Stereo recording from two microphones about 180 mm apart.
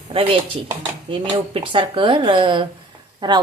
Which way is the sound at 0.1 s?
30° right (ahead or behind).